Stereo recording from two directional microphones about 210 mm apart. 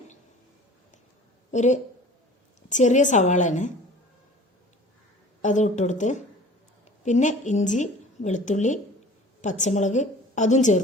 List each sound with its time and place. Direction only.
1.5 s a woman's voice: 35° left (ahead or behind)
5.4 s a woman's voice: 35° left (ahead or behind)